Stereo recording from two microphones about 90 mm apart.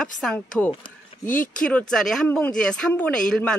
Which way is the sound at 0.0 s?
5° left (ahead or behind).